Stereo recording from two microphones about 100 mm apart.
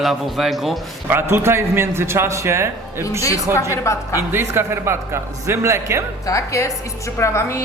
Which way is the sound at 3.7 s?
30° left (ahead or behind).